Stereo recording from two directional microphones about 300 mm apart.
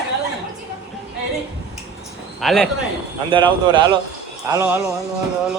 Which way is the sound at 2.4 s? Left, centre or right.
Centre.